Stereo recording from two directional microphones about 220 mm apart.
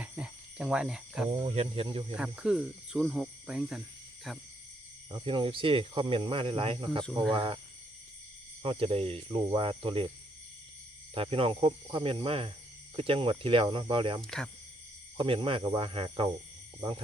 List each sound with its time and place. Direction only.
0.0 s cricket: 5° right (ahead or behind)
1.3 s speech: 25° right (ahead or behind)
2.1 s speech: 5° right (ahead or behind)
5.1 s speech: 20° right (ahead or behind)
7.0 s speech: 5° left (ahead or behind)
7.3 s speech: 25° right (ahead or behind)
8.6 s speech: 25° right (ahead or behind)
11.1 s speech: 25° right (ahead or behind)
14.2 s speech: 5° left (ahead or behind)
15.2 s speech: 25° right (ahead or behind)